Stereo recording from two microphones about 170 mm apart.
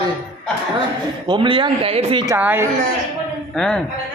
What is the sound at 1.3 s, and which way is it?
Speech, 30° right (ahead or behind).